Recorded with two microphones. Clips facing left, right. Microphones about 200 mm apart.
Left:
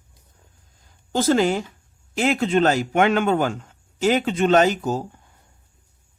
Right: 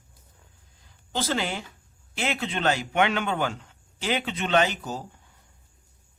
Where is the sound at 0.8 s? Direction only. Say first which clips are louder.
Left 10 dB; 45° left (ahead or behind).